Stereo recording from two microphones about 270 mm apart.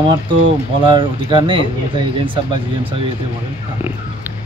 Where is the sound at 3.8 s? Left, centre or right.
Centre.